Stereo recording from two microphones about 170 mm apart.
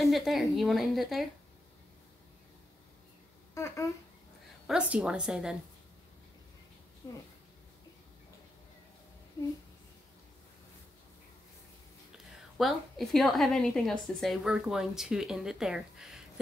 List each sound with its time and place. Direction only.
0.1 s a woman's voice: centre (ahead or behind)
3.5 s a child's voice: 15° left (ahead or behind)
4.6 s a woman's voice: 5° right (ahead or behind)
7.0 s speech: 20° left (ahead or behind)
12.5 s a woman's voice: centre (ahead or behind)